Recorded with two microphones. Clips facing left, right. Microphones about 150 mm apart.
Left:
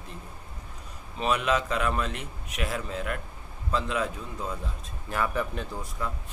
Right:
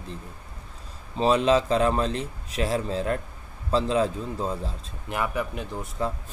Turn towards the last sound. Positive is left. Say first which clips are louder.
# right 1 dB
turn(degrees=-15)  # may be behind; listen again after turning